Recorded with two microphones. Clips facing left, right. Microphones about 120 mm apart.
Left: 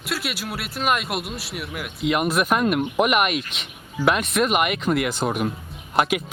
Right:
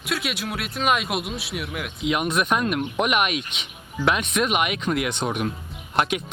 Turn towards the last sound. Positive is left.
turn(degrees=0)  # may be behind; listen again after turning